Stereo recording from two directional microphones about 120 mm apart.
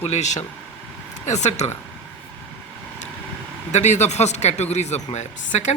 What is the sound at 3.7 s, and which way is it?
A man's voice, 75° left (ahead or behind).